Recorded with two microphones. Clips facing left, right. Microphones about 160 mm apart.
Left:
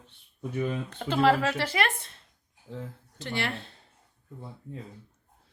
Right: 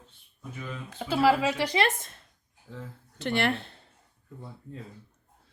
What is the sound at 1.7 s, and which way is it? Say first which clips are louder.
Speech: right 2 dB; 40° right (ahead or behind).